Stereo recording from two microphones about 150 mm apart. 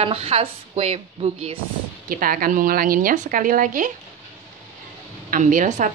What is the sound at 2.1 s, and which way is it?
A woman's voice, 70° right (ahead or behind).